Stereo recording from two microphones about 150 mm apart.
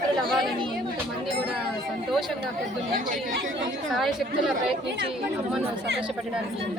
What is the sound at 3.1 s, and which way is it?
Speech, 60° right (ahead or behind).